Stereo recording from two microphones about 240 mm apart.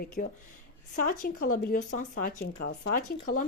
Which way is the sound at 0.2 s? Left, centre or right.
Left.